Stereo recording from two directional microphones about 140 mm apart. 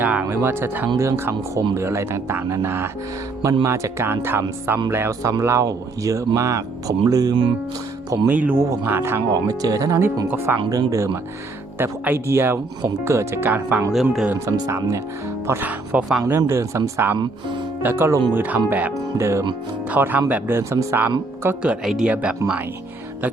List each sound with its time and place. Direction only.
0.0 s music: 10° right (ahead or behind)
0.3 s speech: 15° right (ahead or behind); by 7.5 s 30° right (ahead or behind)
8.3 s speech: 10° right (ahead or behind)
9.3 s speech: 25° right (ahead or behind); by 14.3 s 5° right (ahead or behind)
14.3 s speech: 20° right (ahead or behind)
15.4 s speech: 10° right (ahead or behind)
16.2 s speech: 20° right (ahead or behind)
17.2 s speech: 35° right (ahead or behind)
17.8 s speech: 15° right (ahead or behind)